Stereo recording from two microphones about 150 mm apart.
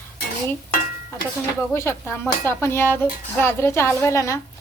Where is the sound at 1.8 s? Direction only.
15° left (ahead or behind).